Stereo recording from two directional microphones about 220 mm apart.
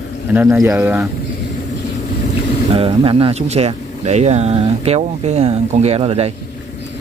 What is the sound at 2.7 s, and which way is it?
Speech, 25° right (ahead or behind).